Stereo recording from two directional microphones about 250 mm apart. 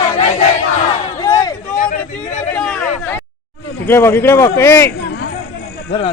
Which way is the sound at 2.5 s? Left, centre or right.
Centre.